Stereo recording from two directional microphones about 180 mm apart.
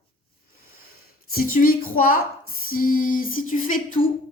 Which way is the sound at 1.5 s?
50° left (ahead or behind).